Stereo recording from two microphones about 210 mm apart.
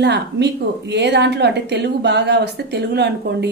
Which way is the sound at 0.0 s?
55° right (ahead or behind).